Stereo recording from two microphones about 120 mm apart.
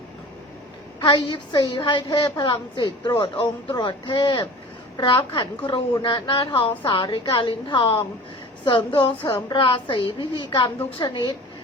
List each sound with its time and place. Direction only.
0.9 s a woman's voice: 40° left (ahead or behind)